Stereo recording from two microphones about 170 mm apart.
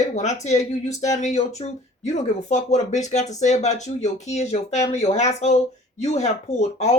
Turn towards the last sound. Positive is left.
turn(degrees=40)  # may be behind; listen again after turning